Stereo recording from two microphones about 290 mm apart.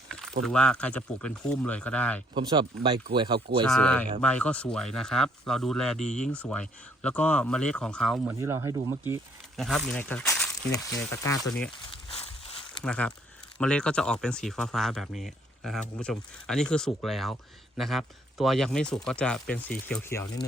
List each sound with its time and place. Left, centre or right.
0.1 s a sound: centre
0.4 s speech: centre
2.3 s speech: centre
3.7 s speech: centre
8.4 s speech: centre
9.6 s speech: centre
11.9 s a sound: centre
12.8 s speech: centre